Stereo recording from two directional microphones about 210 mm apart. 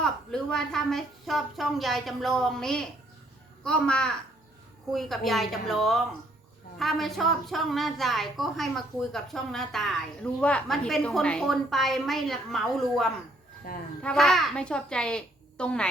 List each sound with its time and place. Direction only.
0.0 s a woman's voice: centre (ahead or behind)
13.7 s speech: 45° left (ahead or behind)
14.0 s a woman's voice: 5° left (ahead or behind)